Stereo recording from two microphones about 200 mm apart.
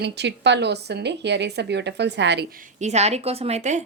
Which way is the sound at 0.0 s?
60° right (ahead or behind).